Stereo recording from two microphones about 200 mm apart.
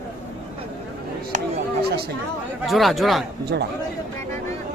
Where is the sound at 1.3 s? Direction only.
50° right (ahead or behind).